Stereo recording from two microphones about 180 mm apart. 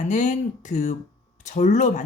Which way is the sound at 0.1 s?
45° left (ahead or behind).